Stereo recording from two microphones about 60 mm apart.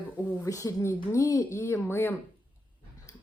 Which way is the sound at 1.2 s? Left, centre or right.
Left.